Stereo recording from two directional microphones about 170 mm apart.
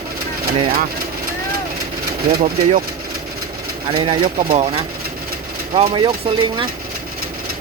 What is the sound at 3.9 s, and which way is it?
Speech, 35° right (ahead or behind).